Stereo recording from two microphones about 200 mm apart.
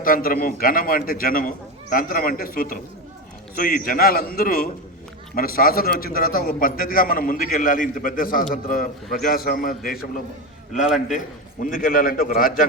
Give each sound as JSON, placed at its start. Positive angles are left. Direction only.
{"t": 0.0, "sound": "a man's voice", "side_deg": 45}
{"t": 10.7, "sound": "a man's voice", "side_deg": 0}
{"t": 11.6, "sound": "a man's voice", "side_deg": 45}